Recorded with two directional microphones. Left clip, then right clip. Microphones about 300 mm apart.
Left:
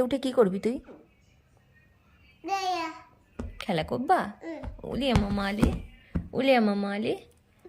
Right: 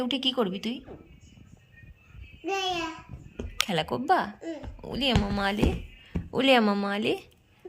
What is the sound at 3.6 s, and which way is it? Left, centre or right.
A woman's voice, centre.